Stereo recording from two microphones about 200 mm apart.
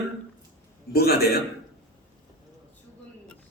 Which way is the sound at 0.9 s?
50° left (ahead or behind).